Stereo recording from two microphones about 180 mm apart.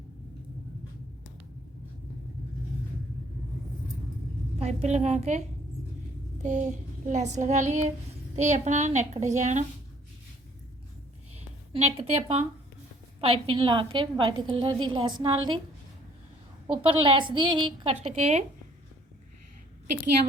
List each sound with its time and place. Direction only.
4.6 s child singing: 40° right (ahead or behind)
6.4 s child singing: 45° right (ahead or behind)
11.7 s child singing: 35° right (ahead or behind)
13.2 s a woman's voice: 30° right (ahead or behind)
16.7 s a woman's voice: 30° right (ahead or behind)
18.0 s child singing: 35° right (ahead or behind)